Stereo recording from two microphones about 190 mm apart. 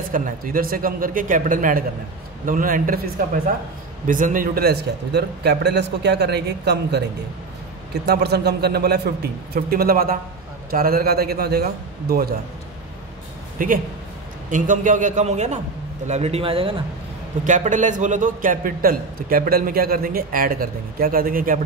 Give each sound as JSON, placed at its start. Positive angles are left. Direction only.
{"t": 0.1, "sound": "a man's voice", "side_deg": -45}
{"t": 4.1, "sound": "a man's voice", "side_deg": -45}
{"t": 8.0, "sound": "a man's voice", "side_deg": -60}
{"t": 13.6, "sound": "a man's voice", "side_deg": -45}
{"t": 17.5, "sound": "a man's voice", "side_deg": -40}